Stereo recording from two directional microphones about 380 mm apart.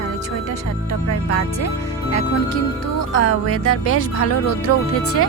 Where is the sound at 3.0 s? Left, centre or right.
Left.